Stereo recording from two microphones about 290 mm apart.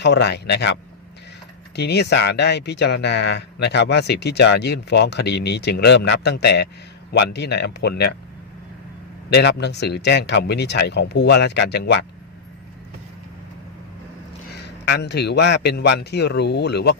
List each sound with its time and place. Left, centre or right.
0.0 s speech: left
1.7 s speech: left
9.3 s speech: left
14.5 s speech: left